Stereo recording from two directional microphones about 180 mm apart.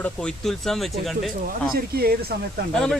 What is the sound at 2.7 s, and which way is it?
Speech, centre (ahead or behind).